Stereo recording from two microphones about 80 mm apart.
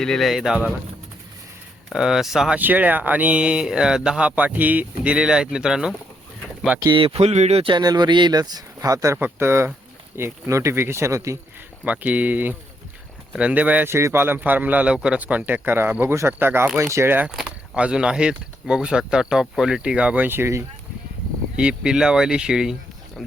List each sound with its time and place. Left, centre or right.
0.0 s speech: centre
1.9 s speech: centre
2.6 s speech: right
7.6 s speech: right
9.2 s speech: right
11.9 s a man's voice: centre
13.8 s a man's voice: right
17.3 s speech: centre
21.5 s speech: centre